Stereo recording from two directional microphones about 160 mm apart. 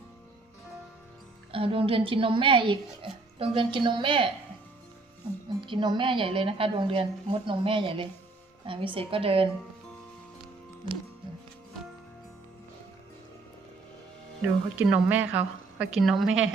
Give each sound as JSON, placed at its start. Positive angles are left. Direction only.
{"t": 1.5, "sound": "a woman's voice", "side_deg": -35}
{"t": 5.5, "sound": "a woman's voice", "side_deg": -30}
{"t": 14.8, "sound": "a woman's voice", "side_deg": -10}